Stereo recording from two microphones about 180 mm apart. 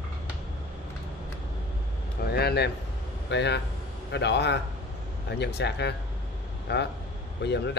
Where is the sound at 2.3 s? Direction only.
65° left (ahead or behind).